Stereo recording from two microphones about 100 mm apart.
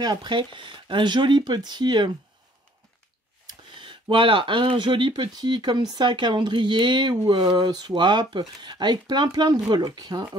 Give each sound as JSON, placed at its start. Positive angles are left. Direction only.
{"t": 0.0, "sound": "speech", "side_deg": -45}
{"t": 3.4, "sound": "speech", "side_deg": -55}